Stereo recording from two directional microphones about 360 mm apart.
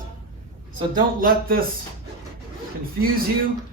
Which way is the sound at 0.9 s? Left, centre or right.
Right.